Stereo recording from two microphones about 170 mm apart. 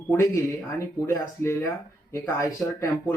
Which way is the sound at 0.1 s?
15° left (ahead or behind).